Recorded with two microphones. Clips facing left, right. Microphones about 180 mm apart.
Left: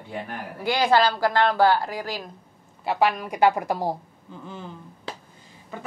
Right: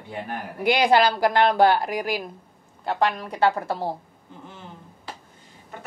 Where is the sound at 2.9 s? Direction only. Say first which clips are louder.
Left 1 dB; 10° left (ahead or behind).